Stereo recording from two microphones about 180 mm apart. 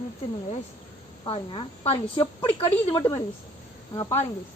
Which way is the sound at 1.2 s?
30° left (ahead or behind).